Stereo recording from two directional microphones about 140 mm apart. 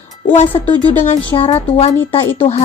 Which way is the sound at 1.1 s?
35° left (ahead or behind).